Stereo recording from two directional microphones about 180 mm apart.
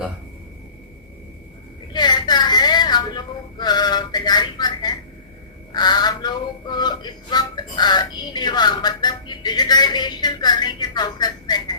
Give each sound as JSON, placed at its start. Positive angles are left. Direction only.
{"t": 1.9, "sound": "whimper", "side_deg": 25}
{"t": 5.7, "sound": "music", "side_deg": 25}